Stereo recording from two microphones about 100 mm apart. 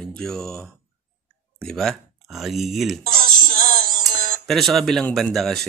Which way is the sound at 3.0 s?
60° right (ahead or behind).